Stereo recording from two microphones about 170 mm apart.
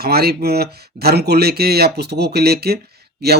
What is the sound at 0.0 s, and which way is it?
Speech, 65° right (ahead or behind).